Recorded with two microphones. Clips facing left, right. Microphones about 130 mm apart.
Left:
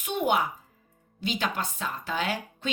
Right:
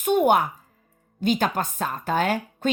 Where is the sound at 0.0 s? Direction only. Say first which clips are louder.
Right 7 dB; 50° right (ahead or behind).